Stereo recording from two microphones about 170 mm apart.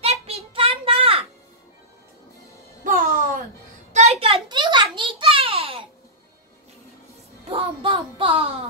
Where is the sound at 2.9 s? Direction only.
50° right (ahead or behind).